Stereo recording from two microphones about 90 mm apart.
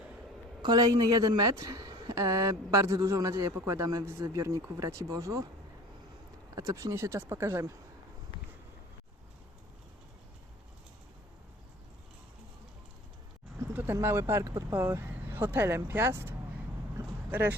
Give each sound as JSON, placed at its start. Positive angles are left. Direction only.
{"t": 0.6, "sound": "a woman's voice", "side_deg": -50}
{"t": 6.6, "sound": "a woman's voice", "side_deg": -40}
{"t": 13.7, "sound": "speech", "side_deg": -25}
{"t": 17.0, "sound": "vehicle", "side_deg": -35}